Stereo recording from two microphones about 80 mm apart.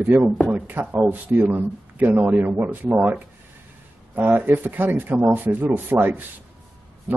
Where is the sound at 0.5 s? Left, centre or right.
Right.